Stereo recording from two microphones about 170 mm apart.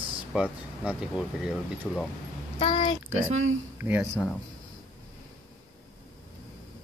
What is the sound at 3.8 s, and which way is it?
Speech, 10° right (ahead or behind).